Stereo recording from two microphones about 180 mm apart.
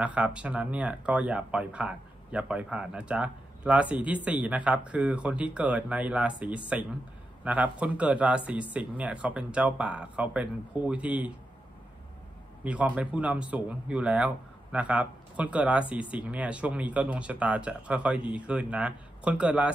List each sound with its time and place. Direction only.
0.0 s speech: 5° right (ahead or behind)
12.6 s speech: 5° right (ahead or behind)